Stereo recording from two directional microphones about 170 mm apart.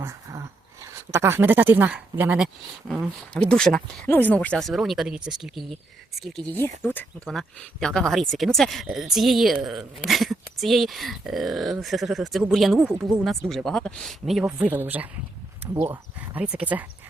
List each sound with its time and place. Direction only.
0.0 s speech: 15° right (ahead or behind)
3.3 s speech: 5° left (ahead or behind)